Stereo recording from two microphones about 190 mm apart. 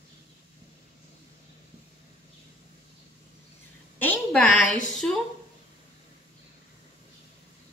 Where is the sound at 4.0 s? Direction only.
5° left (ahead or behind).